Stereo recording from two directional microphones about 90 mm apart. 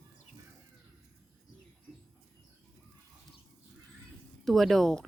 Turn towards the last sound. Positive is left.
turn(degrees=5)  # may be behind; listen again after turning